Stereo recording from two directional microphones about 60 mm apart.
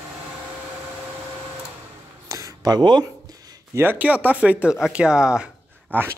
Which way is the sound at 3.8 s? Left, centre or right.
Right.